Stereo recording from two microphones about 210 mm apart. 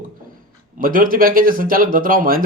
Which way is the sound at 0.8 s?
40° right (ahead or behind).